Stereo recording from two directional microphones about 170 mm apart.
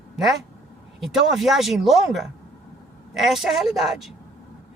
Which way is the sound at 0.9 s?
Centre (ahead or behind).